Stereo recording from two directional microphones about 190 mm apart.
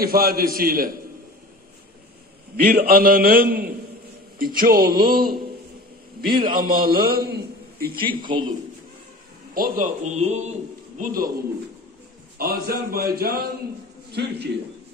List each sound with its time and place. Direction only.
0.0 s a man's voice: 50° right (ahead or behind)
2.5 s a man's voice: 50° right (ahead or behind)
6.5 s a man's voice: 45° right (ahead or behind)
8.1 s a man's voice: 25° right (ahead or behind)
9.5 s a man's voice: 45° right (ahead or behind)
12.4 s a man's voice: 50° right (ahead or behind)